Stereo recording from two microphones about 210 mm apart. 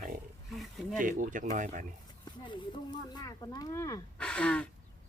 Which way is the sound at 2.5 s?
20° left (ahead or behind).